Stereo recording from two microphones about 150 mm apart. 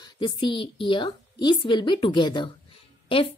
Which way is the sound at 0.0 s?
30° left (ahead or behind).